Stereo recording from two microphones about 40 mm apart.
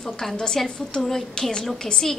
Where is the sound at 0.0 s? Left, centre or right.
Centre.